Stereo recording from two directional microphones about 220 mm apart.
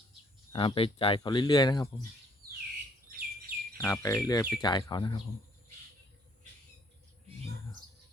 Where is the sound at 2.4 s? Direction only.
45° right (ahead or behind).